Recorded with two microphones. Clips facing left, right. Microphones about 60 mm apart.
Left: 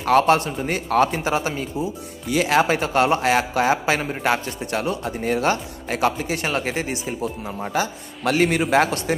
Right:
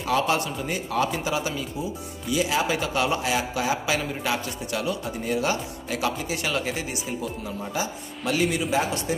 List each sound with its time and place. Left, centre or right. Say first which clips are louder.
0.0 s a man's voice: left 7 dB; left
2.2 s a man's voice: left 6 dB; left
7.7 s a man's voice: left 7 dB; left